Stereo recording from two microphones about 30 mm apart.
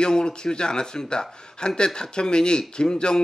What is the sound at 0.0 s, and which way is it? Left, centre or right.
Speech, left.